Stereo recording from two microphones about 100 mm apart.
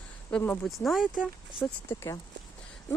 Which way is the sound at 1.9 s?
25° left (ahead or behind).